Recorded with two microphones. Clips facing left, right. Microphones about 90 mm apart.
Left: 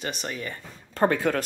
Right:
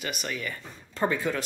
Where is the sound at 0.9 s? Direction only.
50° left (ahead or behind).